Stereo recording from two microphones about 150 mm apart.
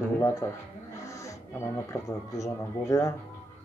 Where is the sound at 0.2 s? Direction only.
20° left (ahead or behind).